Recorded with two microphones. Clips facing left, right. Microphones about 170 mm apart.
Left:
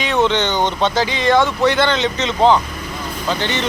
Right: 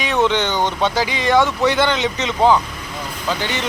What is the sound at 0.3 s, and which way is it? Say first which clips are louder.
Speech: left 1 dB; 10° right (ahead or behind).